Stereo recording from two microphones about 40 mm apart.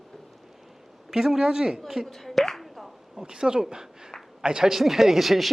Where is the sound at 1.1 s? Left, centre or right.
Centre.